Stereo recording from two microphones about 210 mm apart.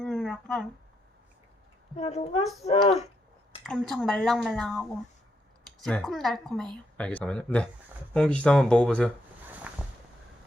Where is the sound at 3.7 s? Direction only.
Centre (ahead or behind).